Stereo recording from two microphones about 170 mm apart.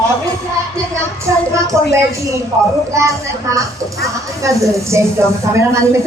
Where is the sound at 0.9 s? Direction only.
15° right (ahead or behind).